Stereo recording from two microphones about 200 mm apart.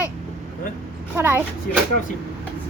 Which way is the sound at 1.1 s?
10° right (ahead or behind).